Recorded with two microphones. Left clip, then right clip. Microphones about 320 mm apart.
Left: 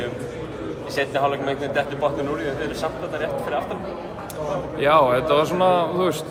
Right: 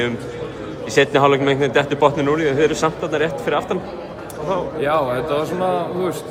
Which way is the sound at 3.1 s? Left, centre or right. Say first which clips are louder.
Right 5 dB; right.